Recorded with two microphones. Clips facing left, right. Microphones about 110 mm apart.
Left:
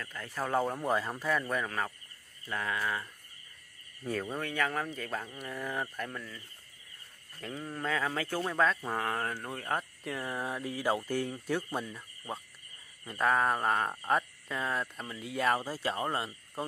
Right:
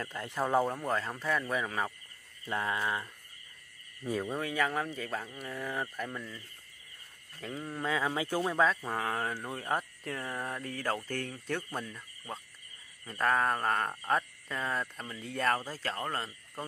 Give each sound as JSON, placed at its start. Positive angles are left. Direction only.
{"t": 0.0, "sound": "speech", "side_deg": -25}
{"t": 0.7, "sound": "speech", "side_deg": 5}
{"t": 2.4, "sound": "speech", "side_deg": -25}
{"t": 4.0, "sound": "speech", "side_deg": -5}
{"t": 7.3, "sound": "speech", "side_deg": 0}